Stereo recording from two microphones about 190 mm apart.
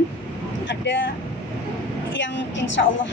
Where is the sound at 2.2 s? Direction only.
75° left (ahead or behind).